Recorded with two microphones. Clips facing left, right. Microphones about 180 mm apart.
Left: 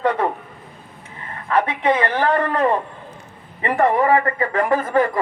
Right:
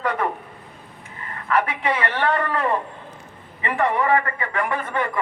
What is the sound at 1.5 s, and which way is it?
A man's voice, 30° left (ahead or behind).